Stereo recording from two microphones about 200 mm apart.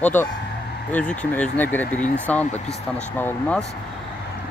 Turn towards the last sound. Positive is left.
turn(degrees=10)  # may be behind; listen again after turning